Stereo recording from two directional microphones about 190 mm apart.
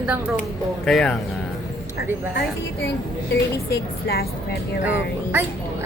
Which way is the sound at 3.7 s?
55° left (ahead or behind).